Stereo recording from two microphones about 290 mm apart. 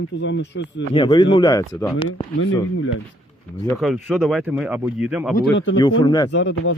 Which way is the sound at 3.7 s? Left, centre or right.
Centre.